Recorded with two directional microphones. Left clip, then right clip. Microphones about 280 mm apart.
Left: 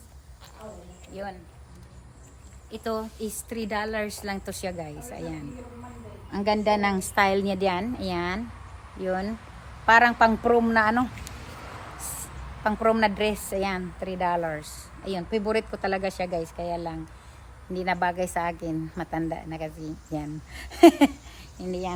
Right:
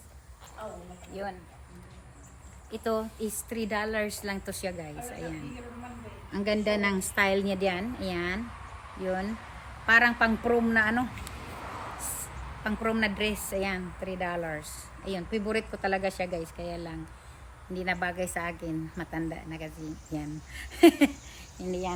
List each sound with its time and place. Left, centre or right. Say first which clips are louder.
1.1 s speech: left 1 dB; centre
2.6 s a woman's voice: even; centre
12.0 s a woman's voice: even; centre